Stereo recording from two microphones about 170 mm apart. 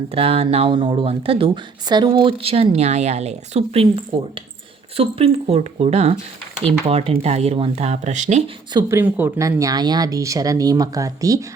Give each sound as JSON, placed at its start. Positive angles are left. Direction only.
{"t": 0.1, "sound": "speech", "side_deg": -35}
{"t": 4.9, "sound": "speech", "side_deg": -35}
{"t": 8.7, "sound": "speech", "side_deg": -15}